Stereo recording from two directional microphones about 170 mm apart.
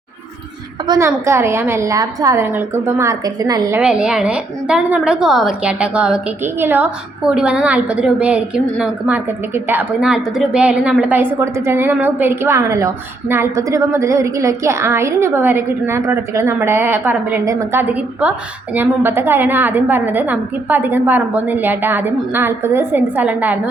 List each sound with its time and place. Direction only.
0.9 s a woman's voice: 15° right (ahead or behind)
3.8 s a woman's voice: 5° right (ahead or behind)